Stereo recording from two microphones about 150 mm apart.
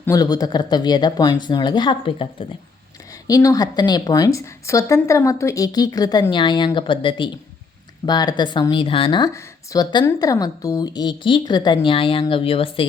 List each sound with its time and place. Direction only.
0.0 s a woman's voice: 25° left (ahead or behind)
3.2 s a woman's voice: 25° left (ahead or behind)
9.3 s a woman's voice: 20° left (ahead or behind); by 12.8 s 40° left (ahead or behind)